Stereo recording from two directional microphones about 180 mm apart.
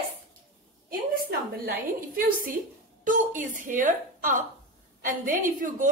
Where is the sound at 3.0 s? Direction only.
45° right (ahead or behind).